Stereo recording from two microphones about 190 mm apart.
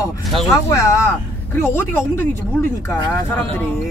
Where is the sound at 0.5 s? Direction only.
15° left (ahead or behind).